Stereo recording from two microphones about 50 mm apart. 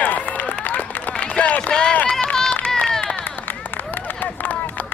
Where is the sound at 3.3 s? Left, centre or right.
Left.